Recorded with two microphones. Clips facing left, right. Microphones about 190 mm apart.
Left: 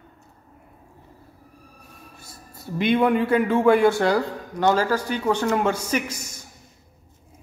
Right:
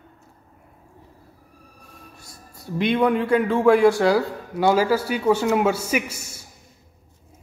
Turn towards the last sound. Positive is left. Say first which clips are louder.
# right 1 dB
turn(degrees=-10)  # may be behind; listen again after turning